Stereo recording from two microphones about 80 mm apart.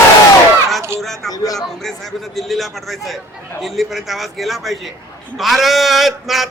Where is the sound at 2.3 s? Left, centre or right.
Centre.